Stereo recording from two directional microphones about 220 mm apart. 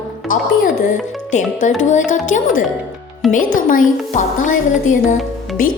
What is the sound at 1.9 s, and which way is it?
Speech, 35° left (ahead or behind).